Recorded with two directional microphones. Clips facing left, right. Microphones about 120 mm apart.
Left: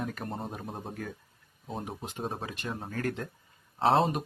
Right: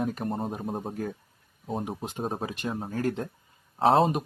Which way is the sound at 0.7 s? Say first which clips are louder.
Right 6 dB; 30° right (ahead or behind).